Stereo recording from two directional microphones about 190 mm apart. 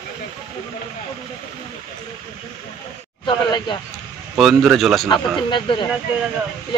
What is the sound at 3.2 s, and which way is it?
Speech, 25° left (ahead or behind).